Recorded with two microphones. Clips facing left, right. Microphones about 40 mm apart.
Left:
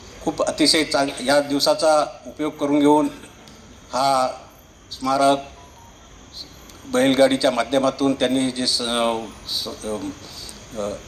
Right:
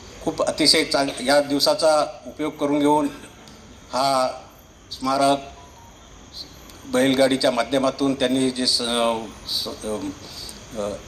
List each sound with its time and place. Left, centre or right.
0.3 s a man's voice: left
2.0 s a man's voice: centre
2.7 s a man's voice: left
6.9 s a man's voice: left
9.8 s speech: centre
10.2 s cricket: left
10.7 s a man's voice: centre